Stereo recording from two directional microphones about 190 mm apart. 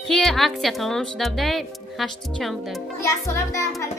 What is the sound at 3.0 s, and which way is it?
Music, 15° left (ahead or behind).